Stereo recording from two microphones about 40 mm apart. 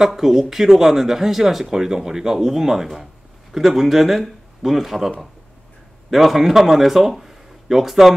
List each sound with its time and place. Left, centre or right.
0.0 s speech: centre